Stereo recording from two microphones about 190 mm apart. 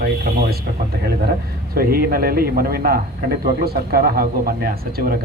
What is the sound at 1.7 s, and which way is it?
Speech, 50° right (ahead or behind).